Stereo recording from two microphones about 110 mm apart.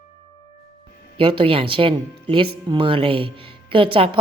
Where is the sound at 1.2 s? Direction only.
50° right (ahead or behind).